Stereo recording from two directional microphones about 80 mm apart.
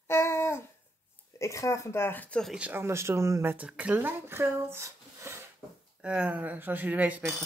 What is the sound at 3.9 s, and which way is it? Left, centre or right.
Speech, right.